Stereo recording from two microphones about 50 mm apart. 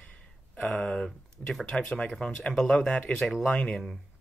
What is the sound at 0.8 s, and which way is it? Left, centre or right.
Speech, centre.